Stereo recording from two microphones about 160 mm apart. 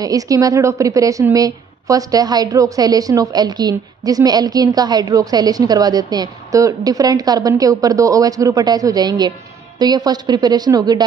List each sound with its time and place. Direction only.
0.0 s a woman's voice: 20° right (ahead or behind)